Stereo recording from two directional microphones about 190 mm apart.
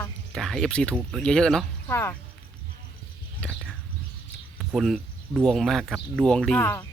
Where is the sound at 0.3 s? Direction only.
Centre (ahead or behind).